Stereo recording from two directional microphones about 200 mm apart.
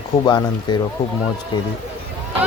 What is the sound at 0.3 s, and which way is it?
Speech, 20° left (ahead or behind).